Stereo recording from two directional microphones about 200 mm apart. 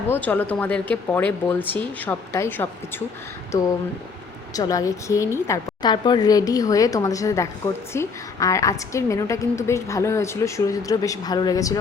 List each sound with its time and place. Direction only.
0.1 s a woman's voice: 10° left (ahead or behind)
4.5 s a woman's voice: 15° left (ahead or behind)